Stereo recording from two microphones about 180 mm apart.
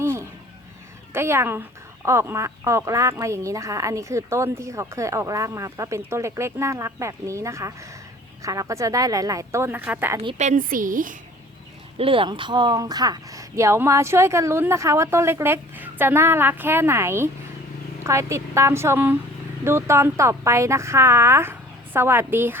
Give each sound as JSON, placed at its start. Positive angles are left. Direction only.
{"t": 0.0, "sound": "a sound", "side_deg": -15}
{"t": 1.1, "sound": "speech", "side_deg": -15}
{"t": 10.2, "sound": "a woman's voice", "side_deg": -35}
{"t": 11.9, "sound": "speech", "side_deg": -30}